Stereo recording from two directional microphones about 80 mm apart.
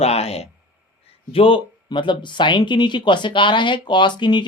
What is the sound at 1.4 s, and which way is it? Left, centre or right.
Speech, left.